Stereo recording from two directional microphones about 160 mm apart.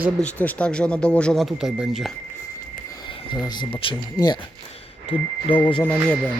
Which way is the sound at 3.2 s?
25° left (ahead or behind).